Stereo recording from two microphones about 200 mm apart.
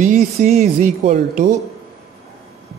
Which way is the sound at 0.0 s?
35° right (ahead or behind).